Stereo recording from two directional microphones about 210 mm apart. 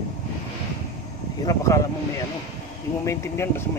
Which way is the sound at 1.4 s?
15° left (ahead or behind).